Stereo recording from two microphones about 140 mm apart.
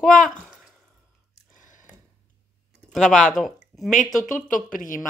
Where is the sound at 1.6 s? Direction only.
65° left (ahead or behind).